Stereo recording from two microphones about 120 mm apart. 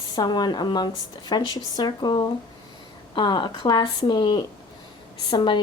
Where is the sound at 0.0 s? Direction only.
35° left (ahead or behind).